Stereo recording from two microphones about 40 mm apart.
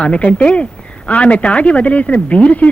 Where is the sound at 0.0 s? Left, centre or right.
Left.